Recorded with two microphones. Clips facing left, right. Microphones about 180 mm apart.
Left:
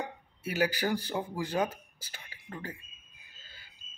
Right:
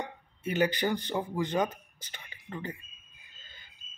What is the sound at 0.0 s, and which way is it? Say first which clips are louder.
Speech: right 1 dB; 5° left (ahead or behind).